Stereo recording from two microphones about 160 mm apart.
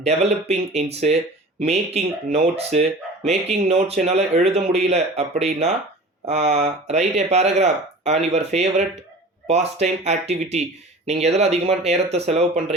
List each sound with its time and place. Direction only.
0.0 s speech: 40° right (ahead or behind)